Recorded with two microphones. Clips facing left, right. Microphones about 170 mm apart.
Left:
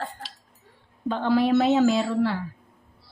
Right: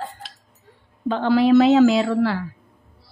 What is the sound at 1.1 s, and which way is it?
Speech, 90° right.